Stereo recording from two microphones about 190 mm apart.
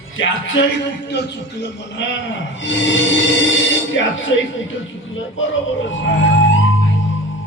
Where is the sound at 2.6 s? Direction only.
80° left.